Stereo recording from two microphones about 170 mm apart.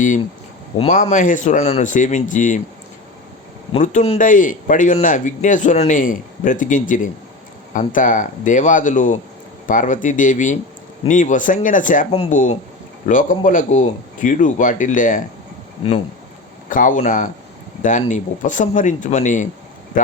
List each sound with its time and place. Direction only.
0.8 s a man's voice: 45° left (ahead or behind)
3.8 s a man's voice: 40° left (ahead or behind)
16.6 s a man's voice: 50° left (ahead or behind)